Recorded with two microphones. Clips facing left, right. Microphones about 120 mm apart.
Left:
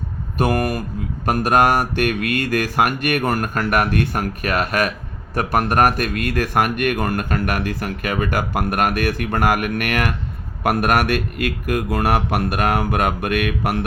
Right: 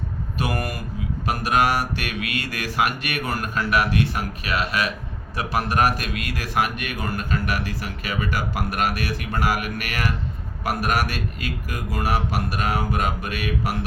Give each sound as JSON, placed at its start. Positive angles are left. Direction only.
{"t": 0.3, "sound": "speech", "side_deg": 50}